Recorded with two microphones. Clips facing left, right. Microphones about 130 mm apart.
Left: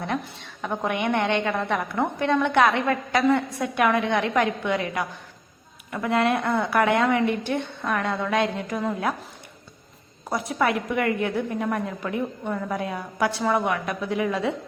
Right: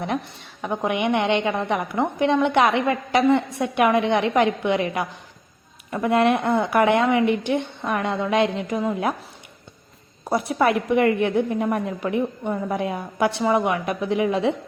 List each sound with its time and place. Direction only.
0.0 s a woman's voice: 15° right (ahead or behind)
10.6 s a woman's voice: 25° right (ahead or behind)